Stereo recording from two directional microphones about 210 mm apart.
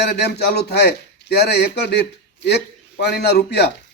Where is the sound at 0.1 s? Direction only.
50° left (ahead or behind).